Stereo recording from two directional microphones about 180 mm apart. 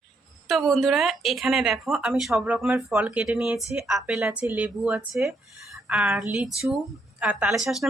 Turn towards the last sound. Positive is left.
turn(degrees=-5)  # may be behind; listen again after turning